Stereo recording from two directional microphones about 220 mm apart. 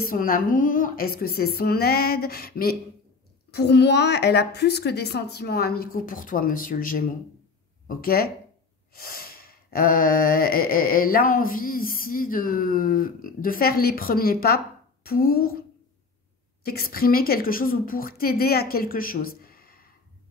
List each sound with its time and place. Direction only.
0.0 s a woman's voice: 40° left (ahead or behind)
7.9 s a sound: 40° left (ahead or behind)
15.0 s a woman's voice: 45° left (ahead or behind)
16.6 s a woman's voice: 45° left (ahead or behind)